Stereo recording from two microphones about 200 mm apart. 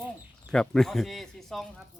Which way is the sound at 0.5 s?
5° left (ahead or behind).